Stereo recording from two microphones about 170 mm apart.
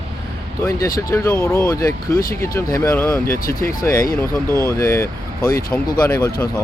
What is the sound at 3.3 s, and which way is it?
Speech, 60° left (ahead or behind).